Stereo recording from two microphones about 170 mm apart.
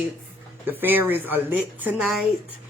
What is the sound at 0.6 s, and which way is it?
Speech, 10° right (ahead or behind).